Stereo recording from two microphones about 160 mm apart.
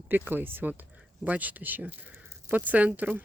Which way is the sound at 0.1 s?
10° right (ahead or behind).